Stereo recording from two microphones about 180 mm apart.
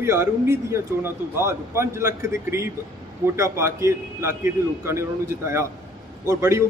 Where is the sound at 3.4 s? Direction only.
15° right (ahead or behind).